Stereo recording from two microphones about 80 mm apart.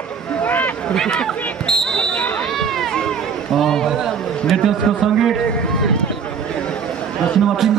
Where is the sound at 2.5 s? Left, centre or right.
Centre.